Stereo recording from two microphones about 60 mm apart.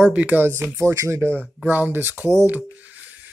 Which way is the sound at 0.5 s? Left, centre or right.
Right.